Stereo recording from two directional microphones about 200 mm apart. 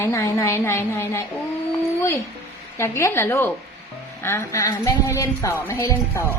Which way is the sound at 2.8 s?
15° left (ahead or behind).